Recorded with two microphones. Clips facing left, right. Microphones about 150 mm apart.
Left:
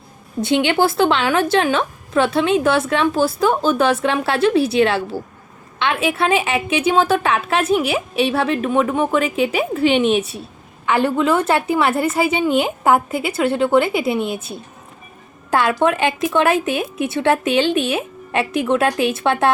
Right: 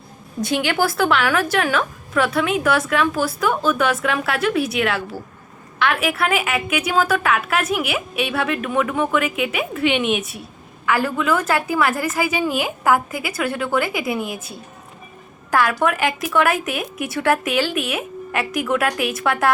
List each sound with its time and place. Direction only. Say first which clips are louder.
0.4 s a woman's voice: left 4 dB; 25° left (ahead or behind)